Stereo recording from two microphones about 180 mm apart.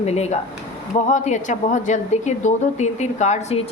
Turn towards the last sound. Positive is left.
turn(degrees=40)  # may be behind; listen again after turning